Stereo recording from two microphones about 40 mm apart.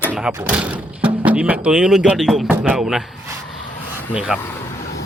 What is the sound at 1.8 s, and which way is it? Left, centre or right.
Speech, centre.